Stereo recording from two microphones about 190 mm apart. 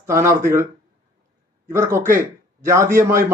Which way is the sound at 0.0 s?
15° right (ahead or behind).